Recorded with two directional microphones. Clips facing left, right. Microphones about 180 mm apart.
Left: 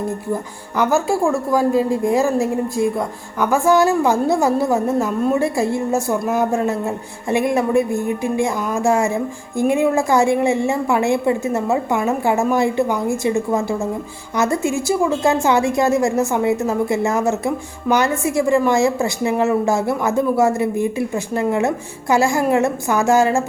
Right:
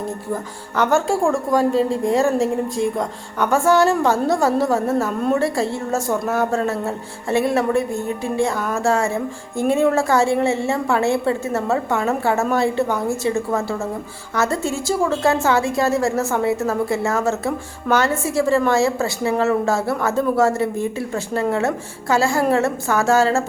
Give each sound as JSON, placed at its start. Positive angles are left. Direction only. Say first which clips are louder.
{"t": 0.8, "sound": "a woman's voice", "louder": "left 1 dB", "side_deg": 5}